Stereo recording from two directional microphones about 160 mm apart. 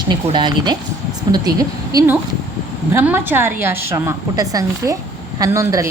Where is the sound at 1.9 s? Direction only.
20° right (ahead or behind).